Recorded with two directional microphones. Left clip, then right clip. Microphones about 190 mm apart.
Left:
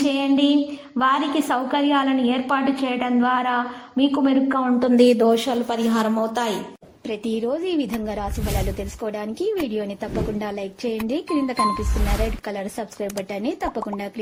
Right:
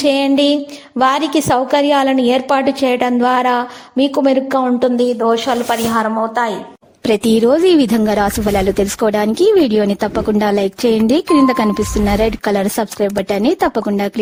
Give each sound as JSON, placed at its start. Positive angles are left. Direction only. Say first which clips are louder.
{"t": 0.0, "sound": "a sound", "louder": "right 7 dB", "side_deg": -40}
{"t": 0.9, "sound": "a woman's voice", "louder": "right 6 dB", "side_deg": -40}
{"t": 4.9, "sound": "a woman's voice", "louder": "right 2 dB", "side_deg": -5}
{"t": 7.1, "sound": "a woman's voice", "louder": "right 13 dB", "side_deg": -70}